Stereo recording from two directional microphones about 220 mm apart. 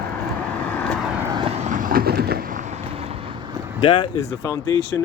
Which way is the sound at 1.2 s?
20° right (ahead or behind).